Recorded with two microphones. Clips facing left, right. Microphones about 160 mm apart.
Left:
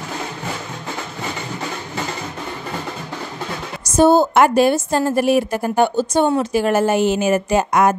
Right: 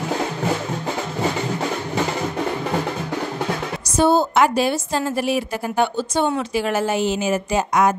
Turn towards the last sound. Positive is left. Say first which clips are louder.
# left 3 dB
turn(degrees=55)  # may be behind; listen again after turning